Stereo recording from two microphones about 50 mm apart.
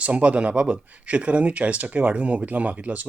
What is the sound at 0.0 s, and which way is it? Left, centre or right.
Speech, right.